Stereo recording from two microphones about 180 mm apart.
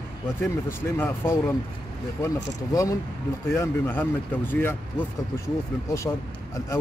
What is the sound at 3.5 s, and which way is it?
Speech, 15° left (ahead or behind).